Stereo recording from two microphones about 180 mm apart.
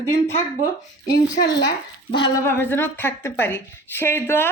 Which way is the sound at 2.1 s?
25° left (ahead or behind).